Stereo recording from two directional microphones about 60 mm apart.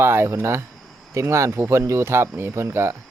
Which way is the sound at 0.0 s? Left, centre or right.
Right.